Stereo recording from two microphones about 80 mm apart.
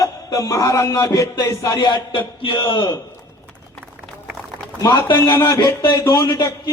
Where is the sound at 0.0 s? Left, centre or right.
Left.